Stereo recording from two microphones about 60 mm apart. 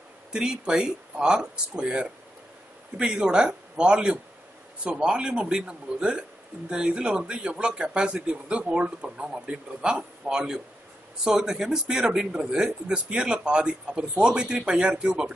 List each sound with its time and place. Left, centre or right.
0.3 s speech: centre